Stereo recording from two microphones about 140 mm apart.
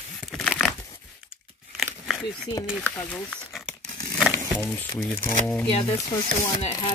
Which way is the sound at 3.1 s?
5° left (ahead or behind).